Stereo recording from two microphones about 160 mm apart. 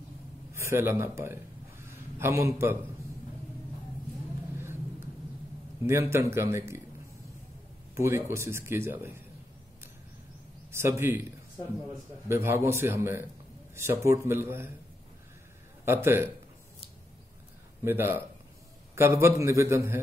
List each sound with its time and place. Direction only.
0.5 s a sound: 15° right (ahead or behind)
4.6 s a sound: 15° right (ahead or behind)
5.8 s speech: 15° right (ahead or behind)
7.9 s speech: 15° right (ahead or behind)
10.7 s speech: 15° right (ahead or behind)
12.3 s speech: 15° right (ahead or behind)
15.8 s a man's voice: 15° right (ahead or behind)
17.8 s speech: 15° right (ahead or behind)